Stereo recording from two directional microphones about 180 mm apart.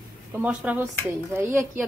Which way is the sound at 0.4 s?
5° right (ahead or behind).